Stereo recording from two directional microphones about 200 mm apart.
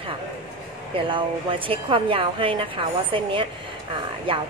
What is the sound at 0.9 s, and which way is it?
A woman's voice, 25° right (ahead or behind).